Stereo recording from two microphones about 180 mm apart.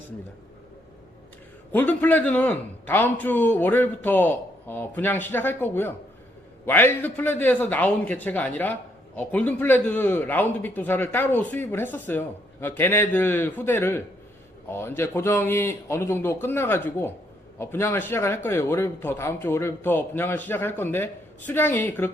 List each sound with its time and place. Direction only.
1.7 s a man's voice: 10° left (ahead or behind)